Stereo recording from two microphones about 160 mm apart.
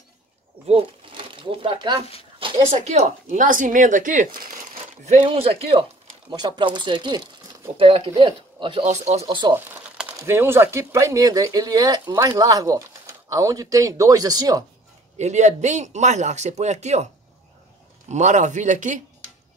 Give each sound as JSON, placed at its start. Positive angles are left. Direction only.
{"t": 0.7, "sound": "speech", "side_deg": -35}
{"t": 2.7, "sound": "a man's voice", "side_deg": -45}
{"t": 5.0, "sound": "speech", "side_deg": -40}
{"t": 8.8, "sound": "a man's voice", "side_deg": -45}
{"t": 9.7, "sound": "crumpling", "side_deg": -10}
{"t": 10.1, "sound": "speech", "side_deg": -15}
{"t": 15.1, "sound": "a man's voice", "side_deg": -45}